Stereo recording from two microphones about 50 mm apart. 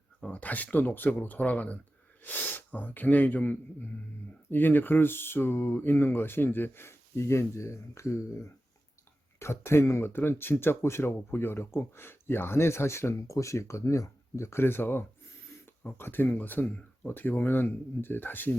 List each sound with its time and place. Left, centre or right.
0.3 s speech: left